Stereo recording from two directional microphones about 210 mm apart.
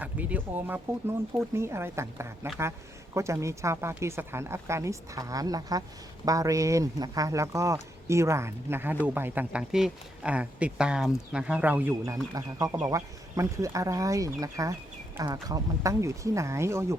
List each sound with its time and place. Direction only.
0.0 s speech: 5° right (ahead or behind)